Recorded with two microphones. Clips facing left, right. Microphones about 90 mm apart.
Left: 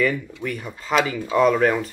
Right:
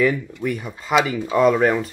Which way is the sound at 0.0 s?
10° right (ahead or behind).